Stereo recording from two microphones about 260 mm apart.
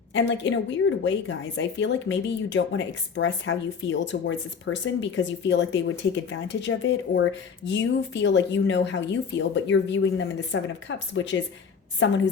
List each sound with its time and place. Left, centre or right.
0.1 s a woman's voice: left